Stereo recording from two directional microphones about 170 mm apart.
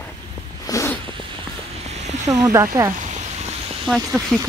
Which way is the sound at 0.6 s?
20° left (ahead or behind).